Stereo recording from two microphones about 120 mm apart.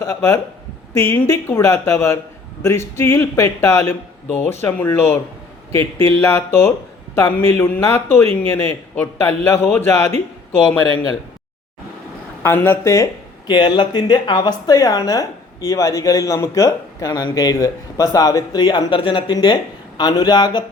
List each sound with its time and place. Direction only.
0.0 s speech: 20° left (ahead or behind)
10.9 s speech: 35° left (ahead or behind)
12.4 s speech: 20° left (ahead or behind)
13.5 s speech: 40° left (ahead or behind)